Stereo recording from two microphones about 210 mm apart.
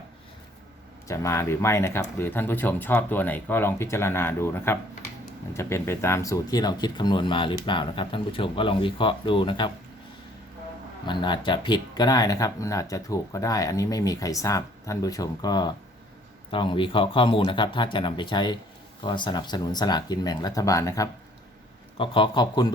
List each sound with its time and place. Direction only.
1.0 s speech: 15° left (ahead or behind)
11.0 s speech: 20° left (ahead or behind)